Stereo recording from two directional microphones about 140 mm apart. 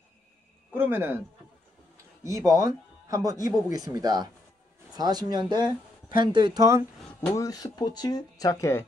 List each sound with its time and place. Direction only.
0.7 s speech: 15° right (ahead or behind)
2.2 s speech: 25° right (ahead or behind)
7.2 s speech: 25° left (ahead or behind)